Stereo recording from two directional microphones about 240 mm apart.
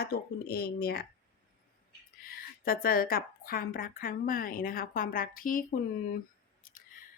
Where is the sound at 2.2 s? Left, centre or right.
Left.